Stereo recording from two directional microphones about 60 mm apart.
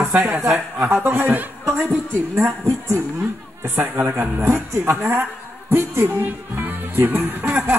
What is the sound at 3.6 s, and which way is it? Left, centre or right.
Speech, right.